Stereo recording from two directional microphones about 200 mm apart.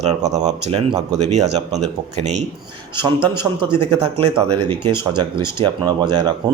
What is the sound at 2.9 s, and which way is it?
Speech, 20° right (ahead or behind).